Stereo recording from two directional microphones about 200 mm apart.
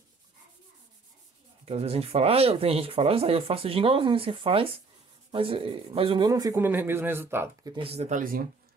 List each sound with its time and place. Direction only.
1.7 s speech: 30° right (ahead or behind); by 7.7 s 10° right (ahead or behind)
7.7 s speech: 30° right (ahead or behind)